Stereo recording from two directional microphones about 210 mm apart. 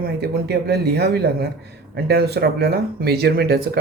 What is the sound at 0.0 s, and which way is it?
Speech, 50° right (ahead or behind).